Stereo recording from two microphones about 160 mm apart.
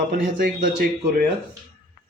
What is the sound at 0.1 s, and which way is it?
Speech, 60° right (ahead or behind).